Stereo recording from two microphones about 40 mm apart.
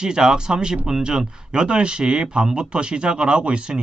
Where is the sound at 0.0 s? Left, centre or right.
Centre.